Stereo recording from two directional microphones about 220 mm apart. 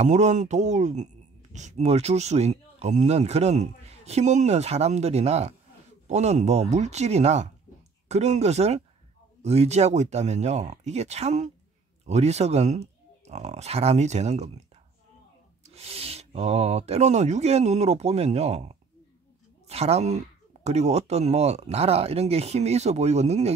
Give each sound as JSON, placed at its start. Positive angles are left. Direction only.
{"t": 0.0, "sound": "speech", "side_deg": -30}
{"t": 15.6, "sound": "speech", "side_deg": -30}